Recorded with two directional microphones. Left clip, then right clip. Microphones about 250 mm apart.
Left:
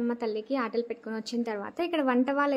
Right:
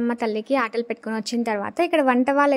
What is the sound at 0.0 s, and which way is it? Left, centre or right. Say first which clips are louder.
A woman's voice: right 6 dB; right.